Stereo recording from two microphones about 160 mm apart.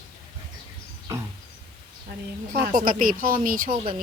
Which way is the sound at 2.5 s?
65° right (ahead or behind).